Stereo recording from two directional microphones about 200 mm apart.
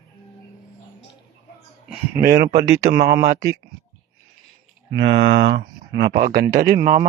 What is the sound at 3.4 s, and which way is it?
Speech, 15° right (ahead or behind).